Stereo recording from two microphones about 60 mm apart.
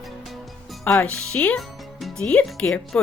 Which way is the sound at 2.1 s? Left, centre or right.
Centre.